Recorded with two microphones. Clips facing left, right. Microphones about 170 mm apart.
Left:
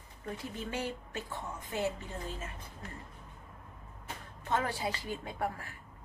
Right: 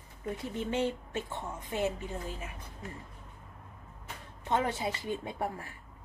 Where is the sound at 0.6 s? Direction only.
25° right (ahead or behind).